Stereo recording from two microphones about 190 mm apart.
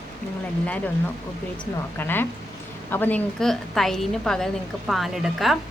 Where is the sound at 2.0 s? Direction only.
10° left (ahead or behind).